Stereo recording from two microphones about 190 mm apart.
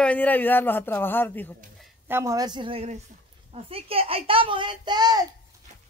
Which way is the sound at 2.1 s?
15° right (ahead or behind).